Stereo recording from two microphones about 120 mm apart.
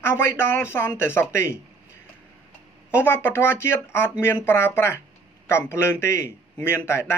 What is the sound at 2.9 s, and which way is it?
A woman's voice, 20° left (ahead or behind).